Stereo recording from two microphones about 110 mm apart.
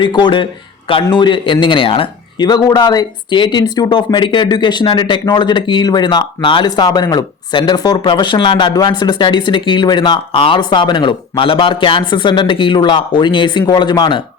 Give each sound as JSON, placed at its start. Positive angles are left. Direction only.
{"t": 0.0, "sound": "speech", "side_deg": 45}
{"t": 2.5, "sound": "speech", "side_deg": 40}